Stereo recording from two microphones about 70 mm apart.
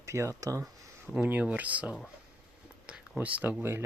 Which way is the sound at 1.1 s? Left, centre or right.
Right.